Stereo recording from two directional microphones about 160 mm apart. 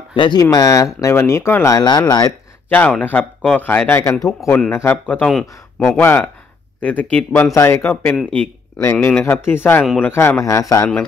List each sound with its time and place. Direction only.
0.1 s speech: 30° left (ahead or behind)
2.7 s speech: 10° left (ahead or behind)